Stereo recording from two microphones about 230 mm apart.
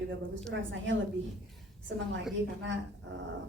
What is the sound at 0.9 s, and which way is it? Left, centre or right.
A woman's voice, right.